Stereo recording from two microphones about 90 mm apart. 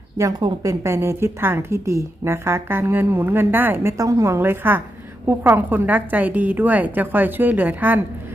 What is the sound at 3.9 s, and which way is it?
A woman's voice, 35° right (ahead or behind).